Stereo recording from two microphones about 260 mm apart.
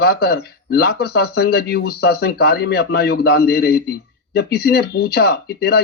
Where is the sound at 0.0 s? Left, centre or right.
Left.